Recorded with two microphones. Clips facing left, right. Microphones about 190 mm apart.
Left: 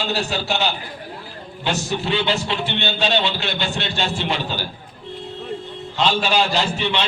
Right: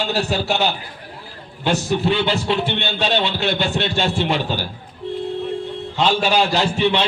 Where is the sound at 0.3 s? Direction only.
50° right (ahead or behind).